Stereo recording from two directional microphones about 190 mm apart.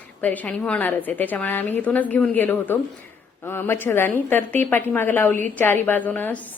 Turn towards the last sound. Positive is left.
turn(degrees=10)  # may be behind; listen again after turning